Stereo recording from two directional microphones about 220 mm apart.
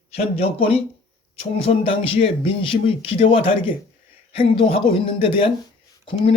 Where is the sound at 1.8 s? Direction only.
25° left (ahead or behind).